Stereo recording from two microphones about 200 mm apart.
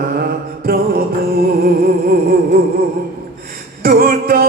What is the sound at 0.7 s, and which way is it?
Music, 45° right (ahead or behind).